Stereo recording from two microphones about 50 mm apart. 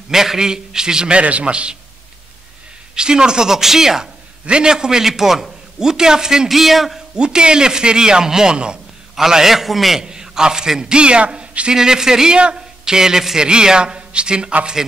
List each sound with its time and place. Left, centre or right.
0.1 s a man's voice: centre
2.9 s a man's voice: centre
7.2 s a man's voice: centre
10.0 s a man's voice: centre